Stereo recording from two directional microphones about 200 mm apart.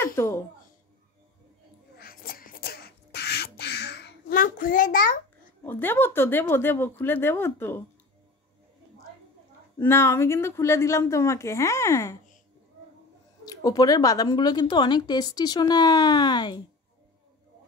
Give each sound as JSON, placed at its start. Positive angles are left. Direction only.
{"t": 0.0, "sound": "a sound", "side_deg": 15}
{"t": 2.0, "sound": "beatboxing", "side_deg": 50}
{"t": 5.6, "sound": "speech", "side_deg": 10}
{"t": 9.8, "sound": "speech", "side_deg": 10}
{"t": 13.5, "sound": "speech", "side_deg": 20}